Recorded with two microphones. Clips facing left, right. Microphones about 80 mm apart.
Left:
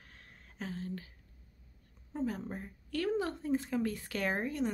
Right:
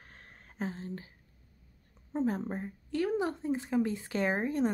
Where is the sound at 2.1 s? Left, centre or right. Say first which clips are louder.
Right 5 dB; right.